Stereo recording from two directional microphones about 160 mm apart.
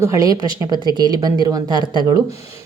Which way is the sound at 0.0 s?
20° right (ahead or behind).